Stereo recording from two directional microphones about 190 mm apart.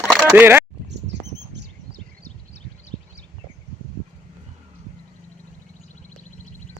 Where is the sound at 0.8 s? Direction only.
65° right (ahead or behind).